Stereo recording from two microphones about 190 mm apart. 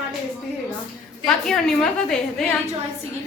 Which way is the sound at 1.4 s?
Centre (ahead or behind).